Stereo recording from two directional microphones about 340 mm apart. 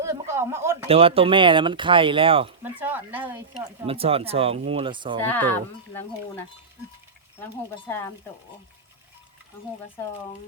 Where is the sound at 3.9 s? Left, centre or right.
Centre.